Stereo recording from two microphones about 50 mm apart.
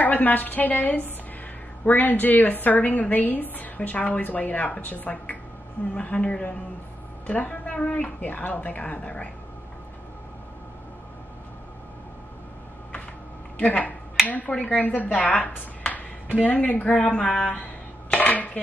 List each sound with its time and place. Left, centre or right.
0.0 s a woman's voice: left
13.6 s a woman's voice: left
18.2 s dishes: left